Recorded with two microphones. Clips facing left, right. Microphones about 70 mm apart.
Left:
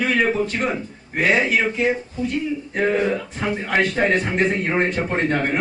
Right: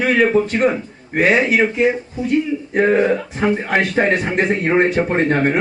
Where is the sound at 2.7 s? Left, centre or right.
Right.